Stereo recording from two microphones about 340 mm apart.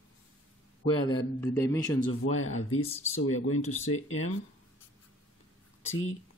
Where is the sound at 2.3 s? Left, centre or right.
Left.